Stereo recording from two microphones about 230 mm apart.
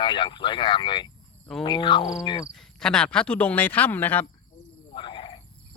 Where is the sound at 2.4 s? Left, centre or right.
Centre.